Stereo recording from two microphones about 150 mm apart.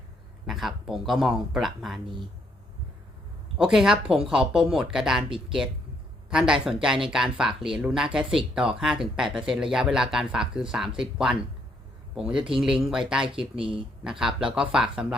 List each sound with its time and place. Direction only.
0.4 s speech: centre (ahead or behind)
3.6 s speech: 5° right (ahead or behind)
12.1 s speech: 5° right (ahead or behind)
13.6 s speech: 35° right (ahead or behind)
14.0 s speech: 5° right (ahead or behind)